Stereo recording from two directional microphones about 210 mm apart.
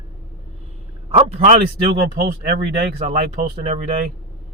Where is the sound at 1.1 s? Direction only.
30° right (ahead or behind).